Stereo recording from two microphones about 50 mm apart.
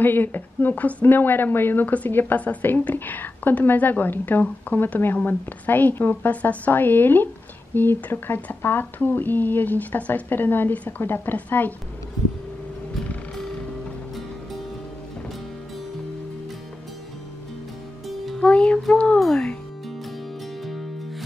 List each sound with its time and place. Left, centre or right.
0.0 s a woman's voice: left
1.0 s speech: left
2.3 s a woman's voice: left
6.3 s a woman's voice: left
18.4 s music: left